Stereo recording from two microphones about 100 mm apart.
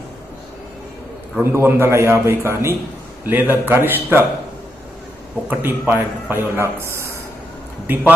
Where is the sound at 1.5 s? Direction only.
25° right (ahead or behind).